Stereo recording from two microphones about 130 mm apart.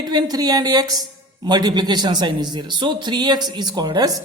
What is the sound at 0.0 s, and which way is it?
Speech, 30° right (ahead or behind).